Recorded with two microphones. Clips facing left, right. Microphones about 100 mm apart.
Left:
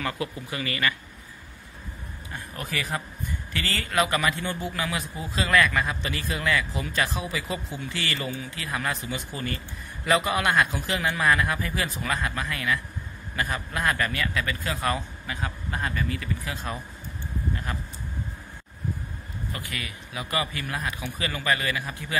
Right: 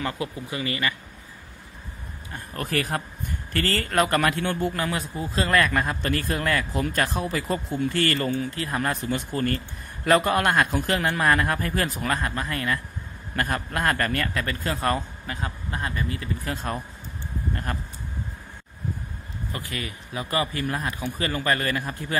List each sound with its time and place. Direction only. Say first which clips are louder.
0.0 s speech: right 1 dB; 25° right (ahead or behind)
2.5 s a man's voice: right 5 dB; 50° right (ahead or behind)
12.0 s a man's voice: right 2 dB; 40° right (ahead or behind)
13.4 s a man's voice: right 2 dB; 55° right (ahead or behind); by 15.5 s 40° right (ahead or behind)
16.4 s a man's voice: right 4 dB; 50° right (ahead or behind)
19.5 s a man's voice: right 4 dB; 30° right (ahead or behind)